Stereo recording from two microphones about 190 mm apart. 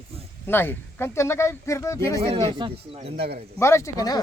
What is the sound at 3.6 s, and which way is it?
Speech, 15° left (ahead or behind).